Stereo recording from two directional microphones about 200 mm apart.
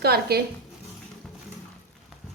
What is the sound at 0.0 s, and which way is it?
Speech, 50° right (ahead or behind).